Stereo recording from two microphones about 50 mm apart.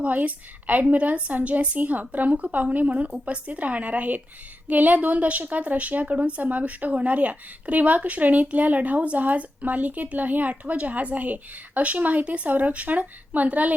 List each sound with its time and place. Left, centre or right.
0.0 s a woman's voice: right